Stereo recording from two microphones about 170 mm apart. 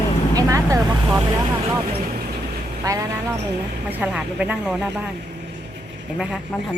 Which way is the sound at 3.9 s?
10° right (ahead or behind).